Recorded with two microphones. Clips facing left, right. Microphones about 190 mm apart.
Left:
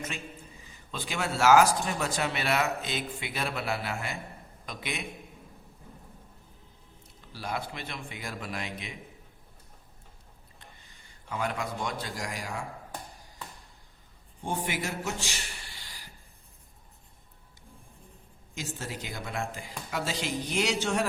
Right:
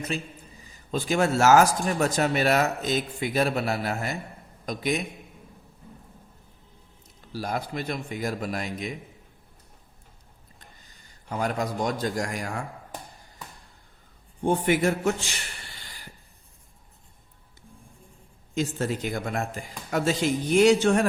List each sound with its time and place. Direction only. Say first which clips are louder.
0.6 s a man's voice: right 10 dB; 40° right (ahead or behind)
7.3 s a man's voice: right 5 dB; 40° right (ahead or behind)
11.3 s a man's voice: right 5 dB; 40° right (ahead or behind)
14.4 s a man's voice: right 10 dB; 55° right (ahead or behind)
18.5 s a man's voice: right 11 dB; 55° right (ahead or behind)